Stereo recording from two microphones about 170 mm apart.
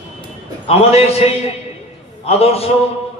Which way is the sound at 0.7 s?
35° left (ahead or behind).